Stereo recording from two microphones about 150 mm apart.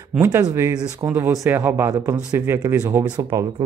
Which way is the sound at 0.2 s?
20° right (ahead or behind).